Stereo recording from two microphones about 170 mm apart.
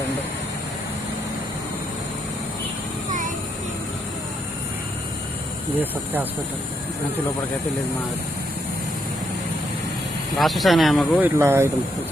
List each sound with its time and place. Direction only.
3.1 s vehicle: 50° right (ahead or behind)
10.3 s speech: centre (ahead or behind)
11.2 s speech: 15° right (ahead or behind)